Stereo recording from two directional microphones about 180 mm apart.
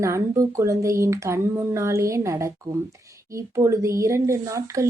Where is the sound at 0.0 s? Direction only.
15° right (ahead or behind).